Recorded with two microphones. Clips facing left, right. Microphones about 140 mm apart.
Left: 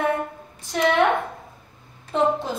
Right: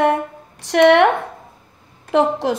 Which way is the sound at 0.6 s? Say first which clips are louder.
Right 8 dB; 75° right (ahead or behind).